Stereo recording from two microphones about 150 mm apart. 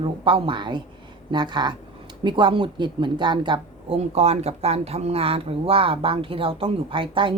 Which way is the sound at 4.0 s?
45° right (ahead or behind).